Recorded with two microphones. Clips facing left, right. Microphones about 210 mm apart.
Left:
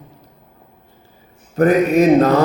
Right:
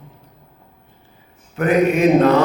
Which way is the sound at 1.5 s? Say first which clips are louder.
Left 3 dB; 40° left (ahead or behind).